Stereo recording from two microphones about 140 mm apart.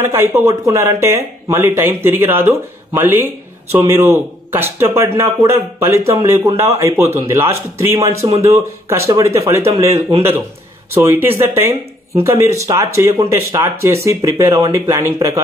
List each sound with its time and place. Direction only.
0.0 s speech: 15° right (ahead or behind)